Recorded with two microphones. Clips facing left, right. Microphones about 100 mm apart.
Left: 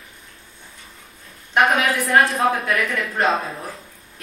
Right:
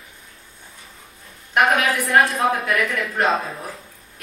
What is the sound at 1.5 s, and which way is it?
A woman's voice, centre (ahead or behind).